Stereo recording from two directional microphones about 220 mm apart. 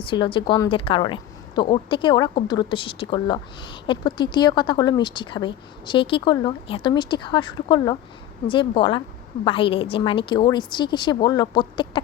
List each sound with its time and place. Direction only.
0.0 s a woman's voice: 20° left (ahead or behind)